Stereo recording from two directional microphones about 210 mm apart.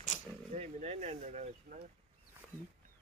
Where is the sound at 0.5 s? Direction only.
30° right (ahead or behind).